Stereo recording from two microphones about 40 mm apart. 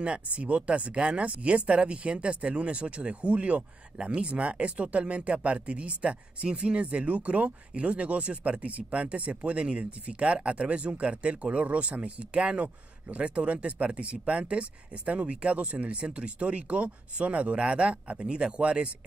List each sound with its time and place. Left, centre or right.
0.0 s speech: right